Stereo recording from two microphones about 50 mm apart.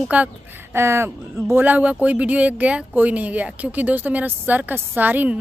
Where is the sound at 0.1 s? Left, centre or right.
Right.